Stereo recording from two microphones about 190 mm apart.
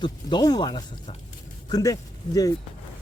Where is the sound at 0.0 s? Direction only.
25° left (ahead or behind).